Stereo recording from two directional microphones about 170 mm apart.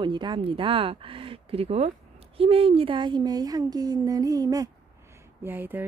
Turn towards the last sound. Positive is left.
turn(degrees=-10)  # may be behind; listen again after turning